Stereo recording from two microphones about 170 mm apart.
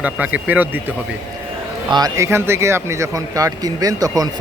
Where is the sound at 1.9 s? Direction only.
25° right (ahead or behind).